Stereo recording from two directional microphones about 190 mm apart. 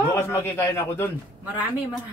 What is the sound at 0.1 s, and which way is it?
Speech, 15° left (ahead or behind).